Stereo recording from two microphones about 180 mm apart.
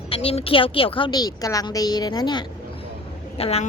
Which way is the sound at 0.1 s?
35° left (ahead or behind).